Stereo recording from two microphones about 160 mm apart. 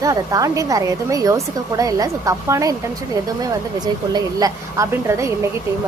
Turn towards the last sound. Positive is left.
turn(degrees=-20)  # may be behind; listen again after turning